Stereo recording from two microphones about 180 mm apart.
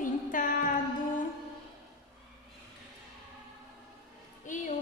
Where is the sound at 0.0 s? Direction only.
45° left (ahead or behind).